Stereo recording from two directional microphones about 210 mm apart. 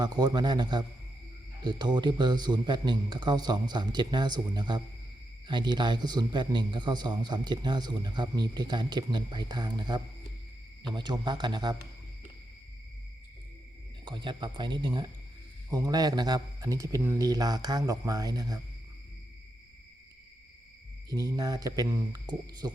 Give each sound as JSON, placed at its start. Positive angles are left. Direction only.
{"t": 0.0, "sound": "speech", "side_deg": -20}
{"t": 14.0, "sound": "a man's voice", "side_deg": -20}
{"t": 21.1, "sound": "a man's voice", "side_deg": -15}